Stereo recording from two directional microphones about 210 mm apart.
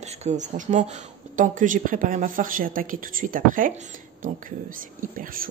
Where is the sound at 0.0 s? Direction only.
30° right (ahead or behind).